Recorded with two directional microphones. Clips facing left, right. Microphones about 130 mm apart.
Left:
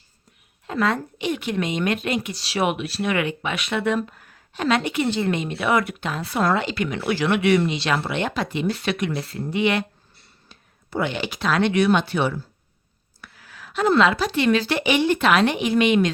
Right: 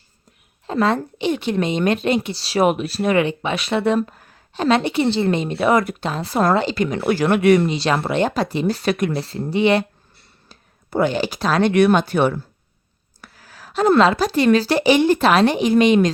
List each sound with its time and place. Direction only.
0.7 s speech: 30° right (ahead or behind)
9.2 s speech: 30° right (ahead or behind)
10.5 s speech: 45° right (ahead or behind)
11.7 s speech: 50° right (ahead or behind)
13.2 s a sound: 40° right (ahead or behind)
14.0 s speech: 35° right (ahead or behind)